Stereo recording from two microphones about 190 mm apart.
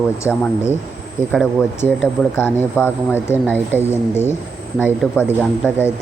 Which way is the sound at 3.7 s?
10° right (ahead or behind).